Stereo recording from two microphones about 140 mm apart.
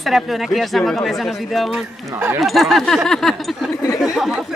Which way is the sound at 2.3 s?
Centre (ahead or behind).